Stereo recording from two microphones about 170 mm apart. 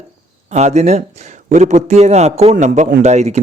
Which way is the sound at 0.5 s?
40° right (ahead or behind).